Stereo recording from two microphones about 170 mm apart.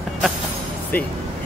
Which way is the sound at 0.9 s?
10° left (ahead or behind).